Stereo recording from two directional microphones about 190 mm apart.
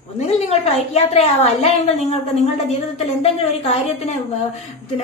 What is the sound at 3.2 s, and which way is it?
Speech, 30° left (ahead or behind).